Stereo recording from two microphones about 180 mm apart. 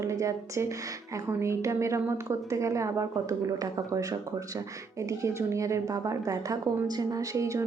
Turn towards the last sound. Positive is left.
turn(degrees=-20)  # may be behind; listen again after turning